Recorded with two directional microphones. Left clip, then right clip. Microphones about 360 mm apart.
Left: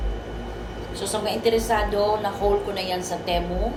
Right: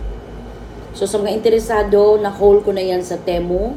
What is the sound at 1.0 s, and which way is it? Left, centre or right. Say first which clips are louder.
A woman's voice: right 7 dB; centre.